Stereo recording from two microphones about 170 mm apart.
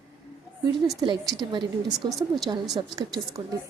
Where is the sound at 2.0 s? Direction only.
25° right (ahead or behind).